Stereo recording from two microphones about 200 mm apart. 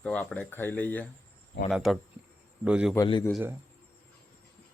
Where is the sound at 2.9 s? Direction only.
15° left (ahead or behind).